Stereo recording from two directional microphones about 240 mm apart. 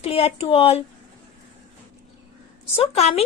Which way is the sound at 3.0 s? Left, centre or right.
Left.